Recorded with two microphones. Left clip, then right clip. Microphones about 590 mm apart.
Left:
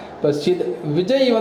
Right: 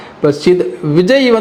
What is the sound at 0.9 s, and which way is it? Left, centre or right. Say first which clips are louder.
Speech: right 7 dB; right.